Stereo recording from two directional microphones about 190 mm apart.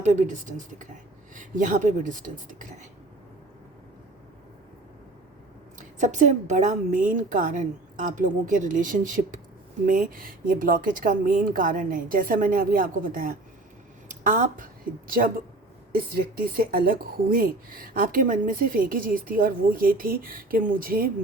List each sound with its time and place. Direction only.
0.0 s speech: 40° right (ahead or behind)
6.0 s speech: 40° right (ahead or behind)